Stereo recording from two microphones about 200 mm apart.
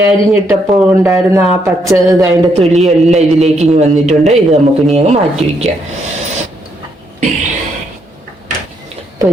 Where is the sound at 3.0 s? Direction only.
35° right (ahead or behind).